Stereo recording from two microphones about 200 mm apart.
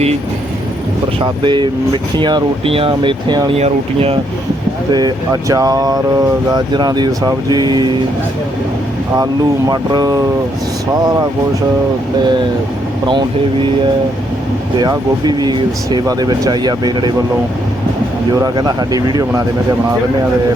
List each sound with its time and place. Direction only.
1.2 s speech: 25° right (ahead or behind)
9.1 s speech: 20° right (ahead or behind)
14.8 s speech: 20° right (ahead or behind)
18.4 s speech: 20° right (ahead or behind)